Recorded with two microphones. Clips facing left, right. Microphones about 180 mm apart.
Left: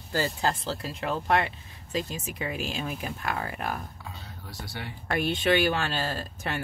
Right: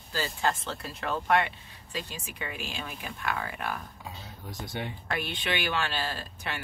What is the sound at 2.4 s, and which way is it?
Speech, 40° left (ahead or behind).